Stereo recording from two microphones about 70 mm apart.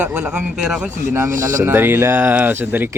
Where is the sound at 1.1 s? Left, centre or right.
Right.